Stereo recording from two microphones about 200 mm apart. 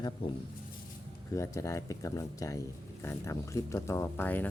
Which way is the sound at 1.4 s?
15° left (ahead or behind).